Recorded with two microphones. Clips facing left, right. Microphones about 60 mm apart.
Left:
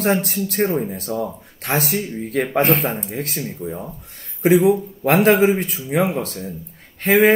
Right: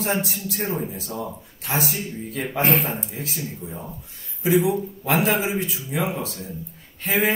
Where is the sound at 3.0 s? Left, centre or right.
Left.